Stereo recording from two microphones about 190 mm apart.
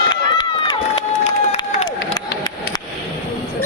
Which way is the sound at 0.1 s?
25° left (ahead or behind).